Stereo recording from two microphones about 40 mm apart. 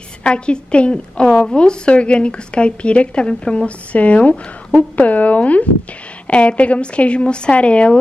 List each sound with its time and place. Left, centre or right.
0.2 s a woman's voice: left